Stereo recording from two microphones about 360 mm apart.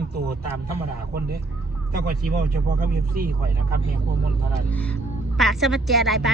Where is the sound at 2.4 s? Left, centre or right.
Right.